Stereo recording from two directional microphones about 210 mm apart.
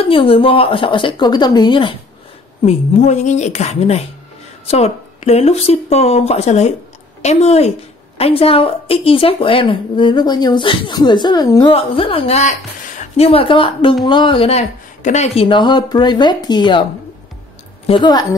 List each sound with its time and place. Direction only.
0.0 s a woman's voice: 25° left (ahead or behind)
2.6 s a woman's voice: 35° left (ahead or behind)
17.8 s a woman's voice: 20° left (ahead or behind)